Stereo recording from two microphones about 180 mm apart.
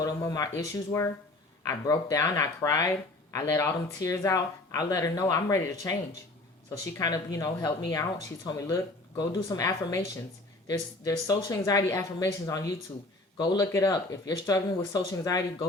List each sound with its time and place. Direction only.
0.0 s speech: 20° left (ahead or behind)
7.0 s speech: 20° left (ahead or behind)